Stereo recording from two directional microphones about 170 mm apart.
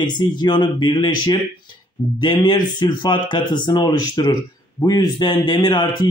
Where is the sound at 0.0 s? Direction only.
25° left (ahead or behind).